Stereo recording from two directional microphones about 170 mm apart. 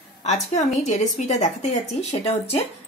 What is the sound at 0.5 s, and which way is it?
Speech, 40° left (ahead or behind).